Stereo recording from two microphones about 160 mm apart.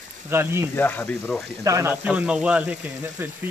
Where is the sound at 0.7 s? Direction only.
10° left (ahead or behind).